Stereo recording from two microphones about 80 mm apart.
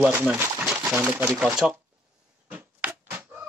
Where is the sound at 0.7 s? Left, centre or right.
Right.